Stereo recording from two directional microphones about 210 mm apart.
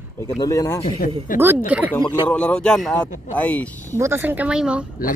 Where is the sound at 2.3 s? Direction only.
5° left (ahead or behind).